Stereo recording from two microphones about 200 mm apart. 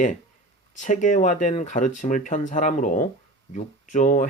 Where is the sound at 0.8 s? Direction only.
40° left (ahead or behind).